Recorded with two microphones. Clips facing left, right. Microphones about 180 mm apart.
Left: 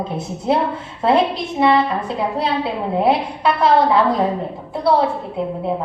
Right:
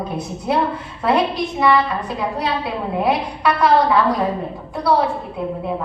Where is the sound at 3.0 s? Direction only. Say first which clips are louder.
Left 2 dB; 25° left (ahead or behind).